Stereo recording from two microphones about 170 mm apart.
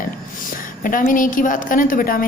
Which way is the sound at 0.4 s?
55° left (ahead or behind).